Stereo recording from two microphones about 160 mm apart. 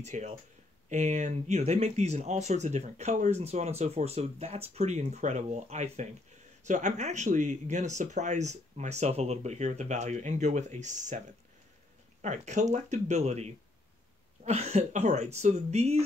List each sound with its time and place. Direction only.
0.0 s speech: 45° right (ahead or behind)